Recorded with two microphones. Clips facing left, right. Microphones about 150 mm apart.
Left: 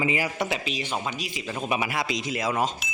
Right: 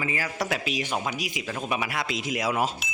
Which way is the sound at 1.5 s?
5° left (ahead or behind).